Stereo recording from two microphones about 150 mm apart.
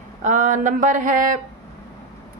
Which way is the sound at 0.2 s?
55° right (ahead or behind).